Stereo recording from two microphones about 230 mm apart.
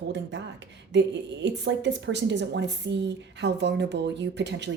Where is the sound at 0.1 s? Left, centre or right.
Right.